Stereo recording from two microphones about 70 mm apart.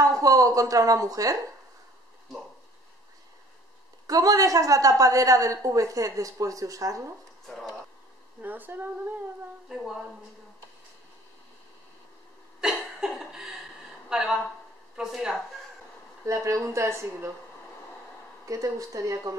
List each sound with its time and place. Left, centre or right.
0.1 s a woman's voice: right
4.1 s a woman's voice: right
7.4 s speech: centre
8.4 s speech: right
12.5 s cough: centre
13.1 s chuckle: centre
14.0 s speech: centre
16.3 s a woman's voice: right
18.4 s a woman's voice: right